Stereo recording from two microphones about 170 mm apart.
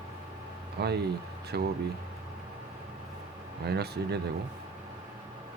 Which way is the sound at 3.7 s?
70° right (ahead or behind).